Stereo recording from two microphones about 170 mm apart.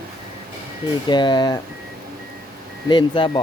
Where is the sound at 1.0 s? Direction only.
25° left (ahead or behind).